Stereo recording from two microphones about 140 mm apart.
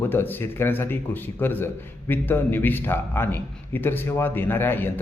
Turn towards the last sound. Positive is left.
turn(degrees=15)  # may be behind; listen again after turning